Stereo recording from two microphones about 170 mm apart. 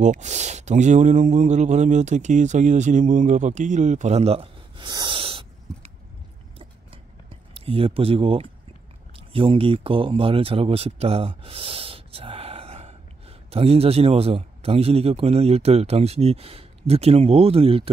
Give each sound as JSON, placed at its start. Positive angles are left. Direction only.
{"t": 0.0, "sound": "speech", "side_deg": -45}
{"t": 7.5, "sound": "a man's voice", "side_deg": -35}